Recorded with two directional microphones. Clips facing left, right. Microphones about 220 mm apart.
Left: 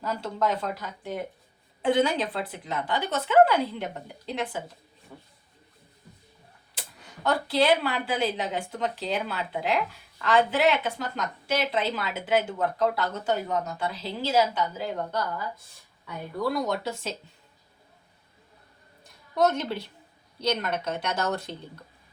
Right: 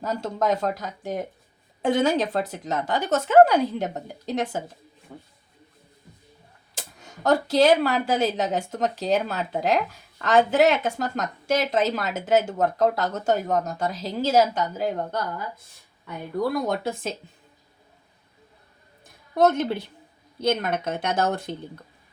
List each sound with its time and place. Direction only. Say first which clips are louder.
0.0 s speech: right 3 dB; 45° right (ahead or behind)
6.7 s speech: right 3 dB; 45° right (ahead or behind)
19.0 s a woman's voice: right 4 dB; 50° right (ahead or behind)